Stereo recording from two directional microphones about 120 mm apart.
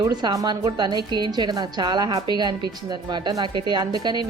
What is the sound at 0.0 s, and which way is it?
A woman's voice, 35° right (ahead or behind).